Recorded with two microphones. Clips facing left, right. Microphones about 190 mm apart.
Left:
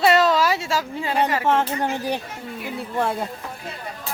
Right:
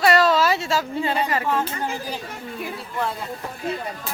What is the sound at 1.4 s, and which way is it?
Speech, 75° left (ahead or behind).